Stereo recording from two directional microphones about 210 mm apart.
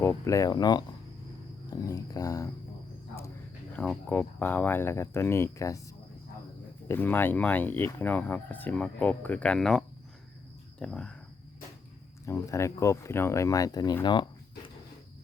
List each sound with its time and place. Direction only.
0.0 s speech: 15° left (ahead or behind)
3.7 s speech: 5° left (ahead or behind)
6.8 s speech: 10° left (ahead or behind)
12.2 s speech: 15° left (ahead or behind)